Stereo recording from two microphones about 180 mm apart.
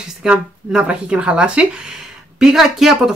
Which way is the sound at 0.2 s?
5° right (ahead or behind).